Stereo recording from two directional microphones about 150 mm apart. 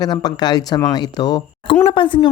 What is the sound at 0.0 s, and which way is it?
A woman's voice, 25° left (ahead or behind).